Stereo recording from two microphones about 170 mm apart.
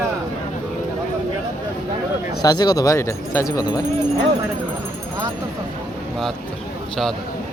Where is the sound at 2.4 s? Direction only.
25° left (ahead or behind).